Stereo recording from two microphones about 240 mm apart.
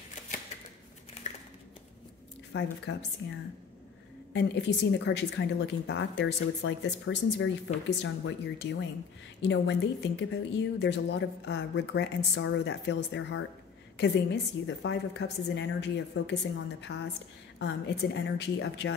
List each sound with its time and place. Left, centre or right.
2.5 s a woman's voice: left
4.3 s a woman's voice: left